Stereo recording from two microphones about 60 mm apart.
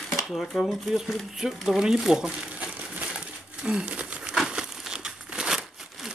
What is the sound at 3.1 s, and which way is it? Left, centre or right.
Crumpling, centre.